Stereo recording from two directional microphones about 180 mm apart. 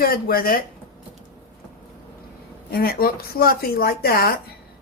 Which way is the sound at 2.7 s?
55° left (ahead or behind).